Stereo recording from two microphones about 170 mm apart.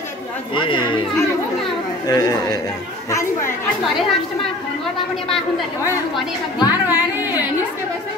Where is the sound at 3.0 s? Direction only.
15° left (ahead or behind).